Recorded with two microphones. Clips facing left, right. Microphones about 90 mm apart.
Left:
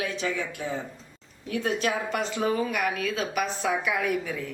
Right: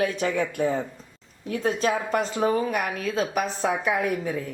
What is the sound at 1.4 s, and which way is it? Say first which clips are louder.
A woman's voice: right 3 dB; 30° right (ahead or behind).